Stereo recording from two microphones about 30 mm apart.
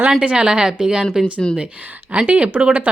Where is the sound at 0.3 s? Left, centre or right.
Right.